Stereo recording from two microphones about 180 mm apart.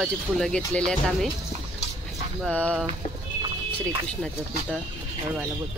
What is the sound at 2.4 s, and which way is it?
Speech, 5° left (ahead or behind).